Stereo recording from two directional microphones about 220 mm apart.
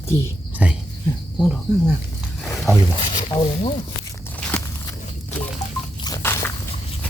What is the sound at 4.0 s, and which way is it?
Walk, 10° left (ahead or behind).